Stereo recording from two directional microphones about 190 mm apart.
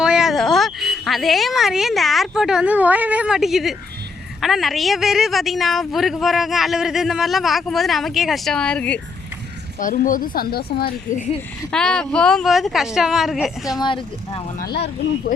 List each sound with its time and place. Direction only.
0.0 s a man's voice: 5° right (ahead or behind)
9.8 s speech: 45° left (ahead or behind)
11.7 s a man's voice: 5° left (ahead or behind)
13.7 s speech: 25° left (ahead or behind)
14.6 s speech: 60° left (ahead or behind)